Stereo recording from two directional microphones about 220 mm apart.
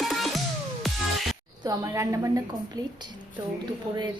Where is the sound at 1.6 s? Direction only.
15° right (ahead or behind).